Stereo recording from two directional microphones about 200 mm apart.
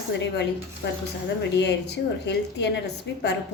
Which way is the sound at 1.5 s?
60° left (ahead or behind).